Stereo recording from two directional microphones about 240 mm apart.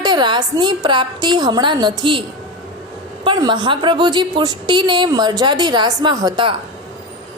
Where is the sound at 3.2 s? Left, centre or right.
Centre.